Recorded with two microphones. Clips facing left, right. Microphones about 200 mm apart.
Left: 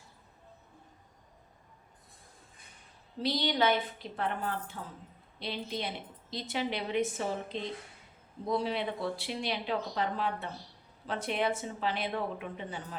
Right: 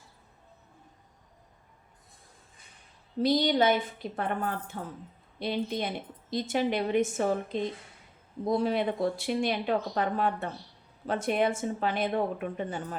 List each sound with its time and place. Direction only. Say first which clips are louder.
3.2 s speech: right 6 dB; 45° right (ahead or behind)